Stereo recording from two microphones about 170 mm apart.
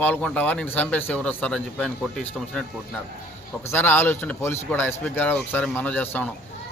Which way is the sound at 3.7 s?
10° left (ahead or behind).